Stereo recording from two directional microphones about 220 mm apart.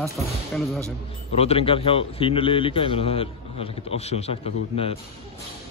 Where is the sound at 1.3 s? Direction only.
25° left (ahead or behind).